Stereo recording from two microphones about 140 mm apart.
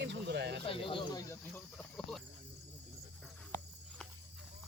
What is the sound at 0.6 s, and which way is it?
Speech, 40° left (ahead or behind).